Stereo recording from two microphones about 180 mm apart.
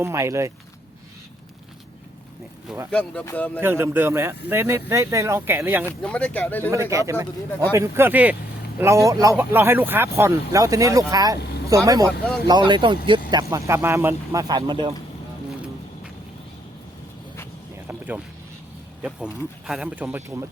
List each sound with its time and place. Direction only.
0.0 s speech: 15° right (ahead or behind)
2.9 s speech: 10° left (ahead or behind)
3.6 s speech: 10° right (ahead or behind)
5.8 s speech: 5° left (ahead or behind)
6.9 s speech: 15° right (ahead or behind)
17.8 s vehicle: 10° right (ahead or behind)
19.0 s speech: 5° right (ahead or behind)